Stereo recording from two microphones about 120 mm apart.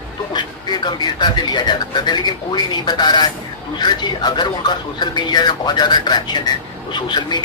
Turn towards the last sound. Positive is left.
turn(degrees=40)  # may be behind; listen again after turning